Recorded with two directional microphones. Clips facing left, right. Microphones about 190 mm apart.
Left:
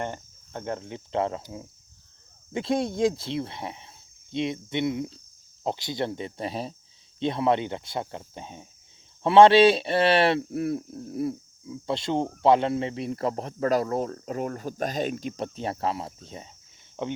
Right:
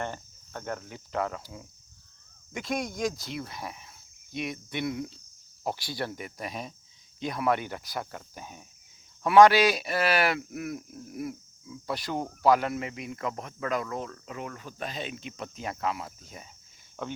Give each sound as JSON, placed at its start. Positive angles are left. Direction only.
{"t": 0.0, "sound": "cricket", "side_deg": 20}
{"t": 2.5, "sound": "speech", "side_deg": 30}
{"t": 5.6, "sound": "cricket", "side_deg": 20}
{"t": 9.2, "sound": "speech", "side_deg": 25}
{"t": 17.0, "sound": "cricket", "side_deg": 20}